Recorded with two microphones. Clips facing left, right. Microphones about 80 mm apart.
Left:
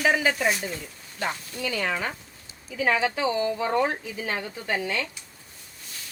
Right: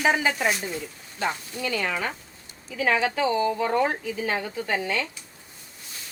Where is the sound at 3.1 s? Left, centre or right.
Right.